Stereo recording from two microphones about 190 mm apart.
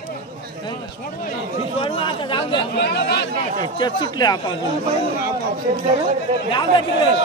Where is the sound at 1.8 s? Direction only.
25° left (ahead or behind).